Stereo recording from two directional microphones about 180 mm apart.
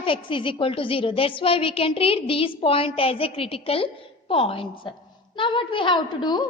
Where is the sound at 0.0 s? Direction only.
30° left (ahead or behind).